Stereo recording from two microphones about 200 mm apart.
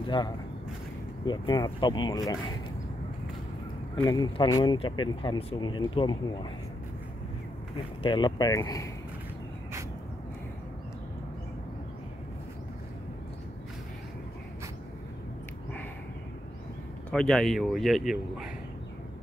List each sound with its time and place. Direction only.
0.0 s speech: 20° left (ahead or behind)
3.9 s speech: 20° left (ahead or behind)
8.0 s speech: 25° left (ahead or behind)
17.1 s speech: 5° left (ahead or behind)